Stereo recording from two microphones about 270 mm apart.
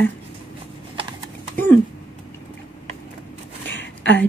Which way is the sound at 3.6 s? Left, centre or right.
Left.